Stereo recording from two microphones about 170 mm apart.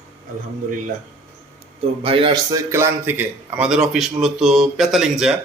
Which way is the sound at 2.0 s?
30° right (ahead or behind).